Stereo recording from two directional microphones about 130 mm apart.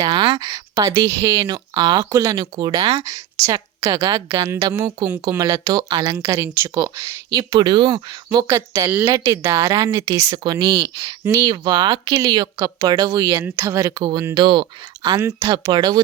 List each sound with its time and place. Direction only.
0.0 s speech: 35° right (ahead or behind)
4.7 s speech: 20° right (ahead or behind)
5.4 s speech: 30° right (ahead or behind)